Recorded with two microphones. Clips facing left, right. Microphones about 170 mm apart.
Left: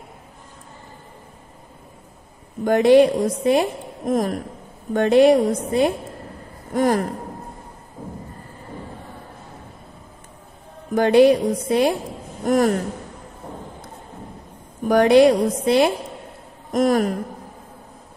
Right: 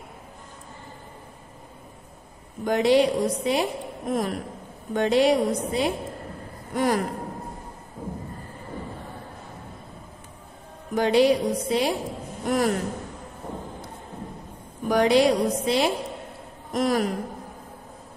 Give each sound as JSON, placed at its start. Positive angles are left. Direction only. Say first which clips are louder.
{"t": 2.6, "sound": "a woman's voice", "louder": "left 6 dB", "side_deg": 50}
{"t": 6.7, "sound": "a sound", "louder": "left 5 dB", "side_deg": 45}
{"t": 11.0, "sound": "a woman's voice", "louder": "left 5 dB", "side_deg": 55}
{"t": 14.9, "sound": "a woman's voice", "louder": "left 6 dB", "side_deg": 55}